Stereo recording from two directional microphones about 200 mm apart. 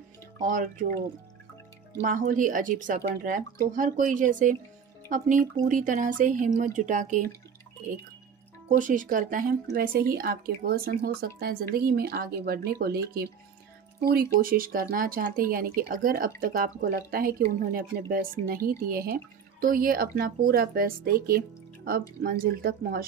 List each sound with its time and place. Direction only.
0.4 s speech: 40° right (ahead or behind)
2.0 s speech: 40° right (ahead or behind)
8.6 s speech: 40° right (ahead or behind)